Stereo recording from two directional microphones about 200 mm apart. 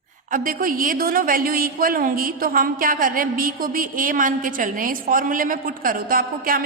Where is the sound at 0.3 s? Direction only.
45° right (ahead or behind).